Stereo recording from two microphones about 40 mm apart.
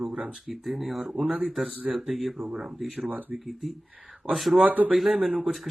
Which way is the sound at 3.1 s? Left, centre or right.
Right.